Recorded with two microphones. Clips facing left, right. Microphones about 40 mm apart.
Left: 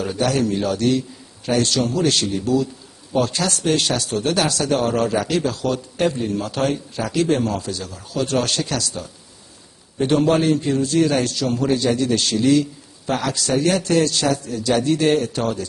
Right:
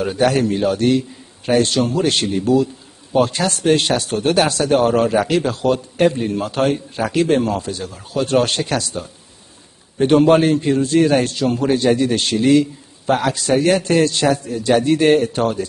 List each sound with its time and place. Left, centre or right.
0.2 s a man's voice: right